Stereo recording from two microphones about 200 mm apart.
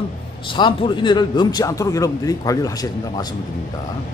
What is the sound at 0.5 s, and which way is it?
A man's voice, 25° left (ahead or behind).